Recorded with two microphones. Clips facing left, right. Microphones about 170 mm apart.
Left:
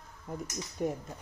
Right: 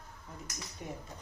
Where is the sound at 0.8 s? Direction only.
50° left (ahead or behind).